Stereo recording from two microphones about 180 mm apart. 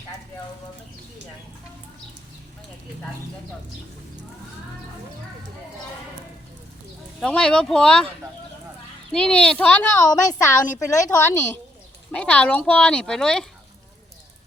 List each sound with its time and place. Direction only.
7.2 s speech: 5° left (ahead or behind)
9.1 s speech: 5° left (ahead or behind)
10.1 s a woman's voice: 20° left (ahead or behind); by 13.5 s 5° left (ahead or behind)